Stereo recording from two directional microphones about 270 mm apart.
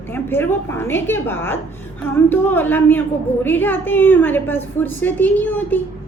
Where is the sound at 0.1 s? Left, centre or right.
Centre.